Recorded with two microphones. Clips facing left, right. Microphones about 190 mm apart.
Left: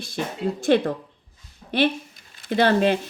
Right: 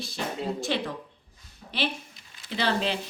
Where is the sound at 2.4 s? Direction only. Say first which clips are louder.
Left 9 dB; 55° left (ahead or behind).